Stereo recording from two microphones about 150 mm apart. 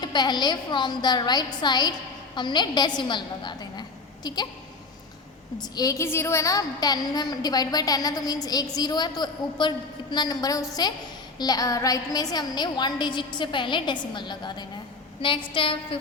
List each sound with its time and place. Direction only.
0.0 s a woman's voice: 30° left (ahead or behind)
5.5 s a woman's voice: 25° left (ahead or behind)